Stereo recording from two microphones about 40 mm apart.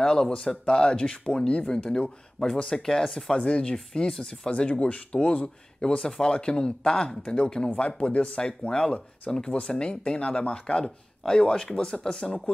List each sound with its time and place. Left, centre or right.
0.0 s speech: left
3.0 s speech: centre
3.3 s speech: left